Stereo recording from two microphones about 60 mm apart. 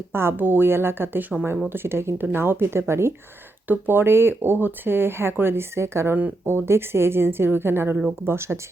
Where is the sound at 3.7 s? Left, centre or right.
Right.